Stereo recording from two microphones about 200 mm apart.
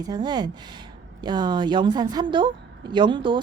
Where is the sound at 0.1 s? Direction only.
20° right (ahead or behind).